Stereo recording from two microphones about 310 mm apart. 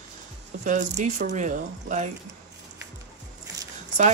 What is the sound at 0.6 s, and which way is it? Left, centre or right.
Speech, right.